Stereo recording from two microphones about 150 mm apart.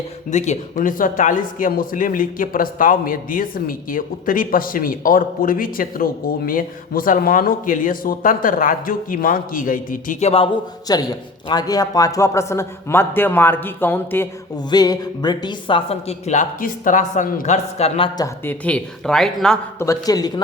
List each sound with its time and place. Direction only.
0.3 s speech: 50° left (ahead or behind)
10.8 s a man's voice: 25° left (ahead or behind)
14.5 s speech: 25° left (ahead or behind); by 18.1 s 40° left (ahead or behind)
18.4 s speech: 10° left (ahead or behind)
19.8 s speech: 20° left (ahead or behind)